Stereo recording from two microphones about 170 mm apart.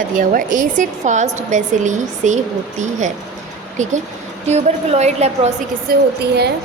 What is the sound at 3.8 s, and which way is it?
A woman's voice, 45° right (ahead or behind).